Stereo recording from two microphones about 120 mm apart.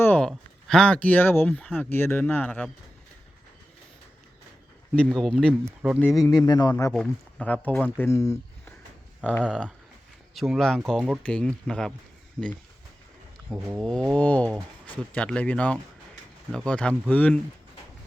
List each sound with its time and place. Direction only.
0.0 s a sound: 15° left (ahead or behind)
0.3 s speech: 5° left (ahead or behind)
4.9 s speech: 5° left (ahead or behind)
6.3 s speech: 35° left (ahead or behind)
6.9 s speech: 10° left (ahead or behind)
8.0 s speech: 25° left (ahead or behind)
9.2 s speech: 10° left (ahead or behind)
10.3 s speech: centre (ahead or behind)
13.5 s a sound: 10° right (ahead or behind)
13.8 s speech: 10° left (ahead or behind)